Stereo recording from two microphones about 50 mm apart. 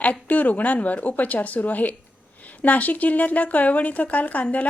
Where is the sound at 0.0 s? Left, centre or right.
Left.